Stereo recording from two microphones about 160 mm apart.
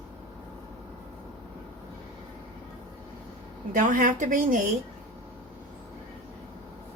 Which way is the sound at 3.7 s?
60° right (ahead or behind).